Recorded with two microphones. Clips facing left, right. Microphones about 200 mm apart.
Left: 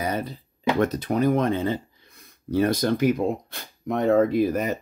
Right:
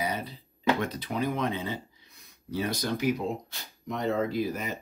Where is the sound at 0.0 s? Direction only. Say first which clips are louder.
Left 5 dB; 50° left (ahead or behind).